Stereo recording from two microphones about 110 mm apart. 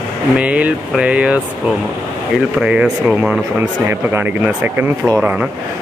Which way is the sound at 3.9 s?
20° right (ahead or behind).